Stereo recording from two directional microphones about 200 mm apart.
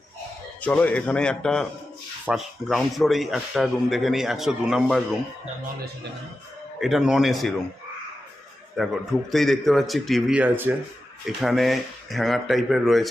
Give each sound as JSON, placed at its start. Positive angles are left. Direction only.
{"t": 0.6, "sound": "speech", "side_deg": 5}
{"t": 6.7, "sound": "speech", "side_deg": 0}
{"t": 8.7, "sound": "speech", "side_deg": 0}